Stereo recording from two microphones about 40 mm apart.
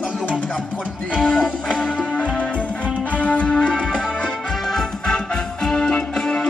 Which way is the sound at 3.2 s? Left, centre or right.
Left.